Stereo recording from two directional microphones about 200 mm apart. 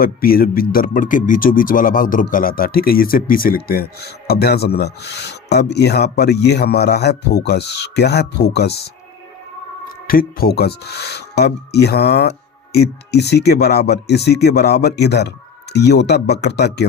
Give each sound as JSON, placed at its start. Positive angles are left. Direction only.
{"t": 0.0, "sound": "speech", "side_deg": 45}
{"t": 10.1, "sound": "speech", "side_deg": 45}